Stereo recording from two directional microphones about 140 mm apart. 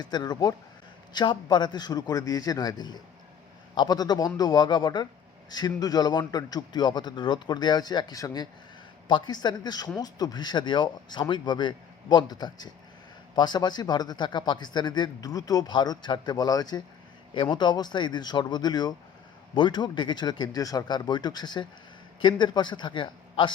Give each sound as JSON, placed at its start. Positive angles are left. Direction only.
{"t": 0.0, "sound": "a man's voice", "side_deg": 30}